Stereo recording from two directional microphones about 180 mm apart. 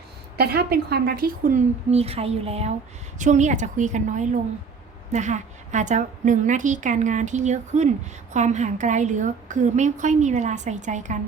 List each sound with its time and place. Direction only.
0.3 s a woman's voice: 60° right (ahead or behind); by 11.2 s 40° right (ahead or behind)